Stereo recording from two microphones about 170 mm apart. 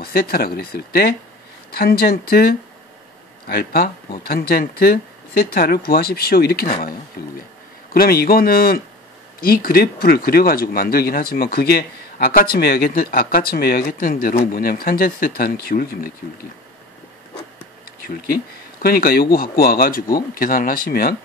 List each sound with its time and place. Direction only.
0.0 s speech: 65° left (ahead or behind)
18.0 s speech: 60° left (ahead or behind)